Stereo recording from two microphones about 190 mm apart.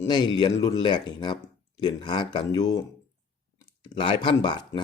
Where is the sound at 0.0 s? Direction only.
20° left (ahead or behind).